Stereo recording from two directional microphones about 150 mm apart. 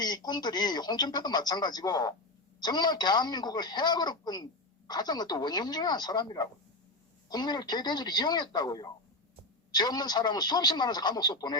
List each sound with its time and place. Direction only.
0.0 s speech: 25° left (ahead or behind)